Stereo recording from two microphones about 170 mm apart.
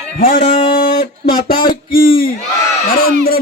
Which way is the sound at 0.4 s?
35° left (ahead or behind).